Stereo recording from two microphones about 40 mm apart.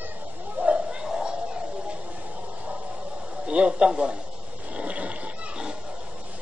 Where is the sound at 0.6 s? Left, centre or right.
Right.